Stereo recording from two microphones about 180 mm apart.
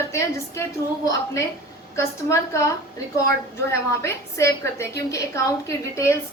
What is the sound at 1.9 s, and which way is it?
A woman's voice, 15° left (ahead or behind).